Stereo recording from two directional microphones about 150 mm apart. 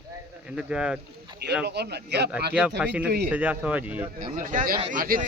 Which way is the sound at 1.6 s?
90° right.